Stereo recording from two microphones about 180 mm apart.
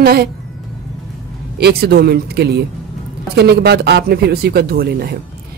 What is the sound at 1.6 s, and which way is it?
Music, 60° right (ahead or behind).